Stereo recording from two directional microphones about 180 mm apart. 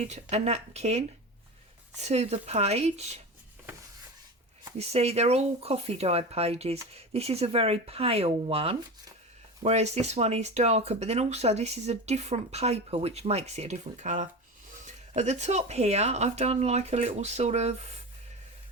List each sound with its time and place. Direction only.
0.0 s speech: 40° right (ahead or behind)
4.8 s speech: 35° right (ahead or behind)